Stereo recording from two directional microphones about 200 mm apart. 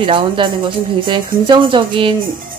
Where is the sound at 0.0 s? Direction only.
25° right (ahead or behind).